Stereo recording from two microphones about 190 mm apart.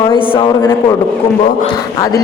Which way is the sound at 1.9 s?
20° left (ahead or behind).